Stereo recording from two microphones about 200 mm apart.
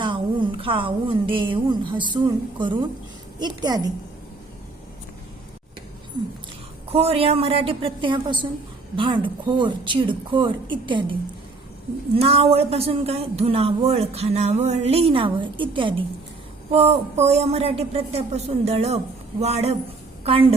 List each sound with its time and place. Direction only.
0.6 s a woman's voice: 25° right (ahead or behind)
6.9 s a woman's voice: 30° right (ahead or behind)